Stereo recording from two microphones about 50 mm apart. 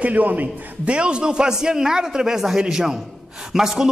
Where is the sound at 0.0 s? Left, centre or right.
Right.